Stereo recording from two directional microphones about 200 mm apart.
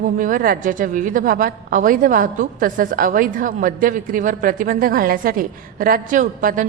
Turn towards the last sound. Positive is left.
turn(degrees=-40)  # may be behind; listen again after turning